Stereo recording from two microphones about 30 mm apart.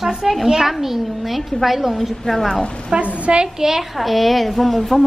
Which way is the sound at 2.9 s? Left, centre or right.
Right.